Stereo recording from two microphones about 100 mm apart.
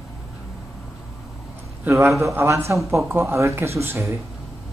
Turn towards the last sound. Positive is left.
turn(degrees=-25)  # may be behind; listen again after turning